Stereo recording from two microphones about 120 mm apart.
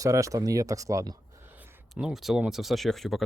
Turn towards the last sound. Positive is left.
turn(degrees=0)  # may be behind; listen again after turning